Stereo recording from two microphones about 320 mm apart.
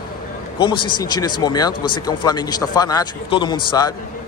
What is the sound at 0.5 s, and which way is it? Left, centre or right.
Speech, centre.